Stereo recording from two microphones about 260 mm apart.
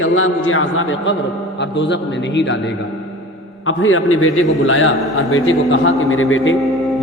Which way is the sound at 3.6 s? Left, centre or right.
Left.